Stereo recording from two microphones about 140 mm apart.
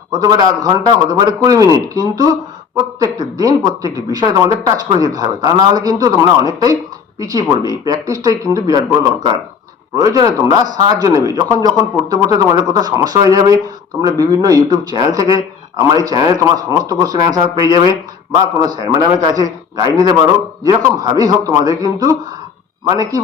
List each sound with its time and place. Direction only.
0.1 s a woman's voice: 30° right (ahead or behind)
9.9 s a woman's voice: 25° right (ahead or behind)